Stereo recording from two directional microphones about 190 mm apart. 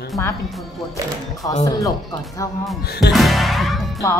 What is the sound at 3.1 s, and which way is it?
Music, centre (ahead or behind).